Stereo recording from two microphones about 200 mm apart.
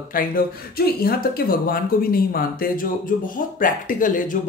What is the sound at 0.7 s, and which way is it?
Speech, 50° left (ahead or behind).